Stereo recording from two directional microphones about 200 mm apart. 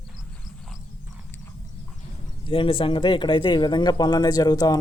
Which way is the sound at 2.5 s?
25° left (ahead or behind).